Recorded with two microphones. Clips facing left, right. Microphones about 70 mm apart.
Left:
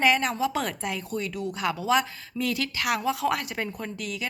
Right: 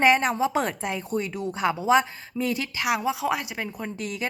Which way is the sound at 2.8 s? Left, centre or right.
Centre.